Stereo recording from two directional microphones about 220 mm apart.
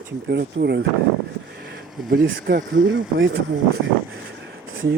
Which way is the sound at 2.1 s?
45° right (ahead or behind).